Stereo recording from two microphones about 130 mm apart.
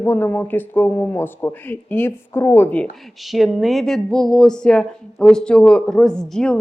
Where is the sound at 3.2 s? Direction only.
Centre (ahead or behind).